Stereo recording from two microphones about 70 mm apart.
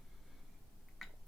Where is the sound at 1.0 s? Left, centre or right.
Centre.